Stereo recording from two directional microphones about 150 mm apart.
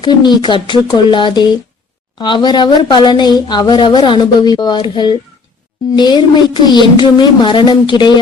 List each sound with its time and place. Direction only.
0.0 s speech: 30° left (ahead or behind)